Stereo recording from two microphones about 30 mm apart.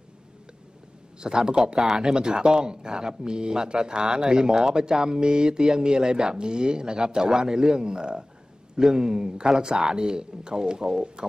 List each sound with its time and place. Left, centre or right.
1.2 s speech: right
7.2 s speech: centre